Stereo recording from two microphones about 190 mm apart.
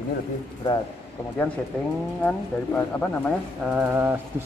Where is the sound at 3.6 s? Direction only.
5° right (ahead or behind).